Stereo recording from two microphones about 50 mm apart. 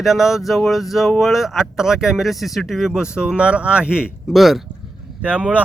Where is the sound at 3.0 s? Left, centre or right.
Centre.